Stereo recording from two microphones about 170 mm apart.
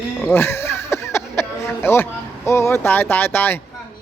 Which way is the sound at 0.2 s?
10° left (ahead or behind).